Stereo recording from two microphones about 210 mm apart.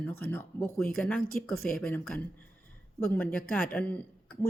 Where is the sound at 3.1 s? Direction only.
10° left (ahead or behind).